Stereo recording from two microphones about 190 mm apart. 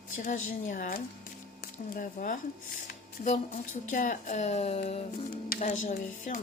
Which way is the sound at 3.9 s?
45° left (ahead or behind).